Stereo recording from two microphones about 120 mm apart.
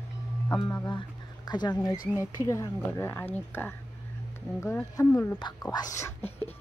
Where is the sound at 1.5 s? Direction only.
35° left (ahead or behind).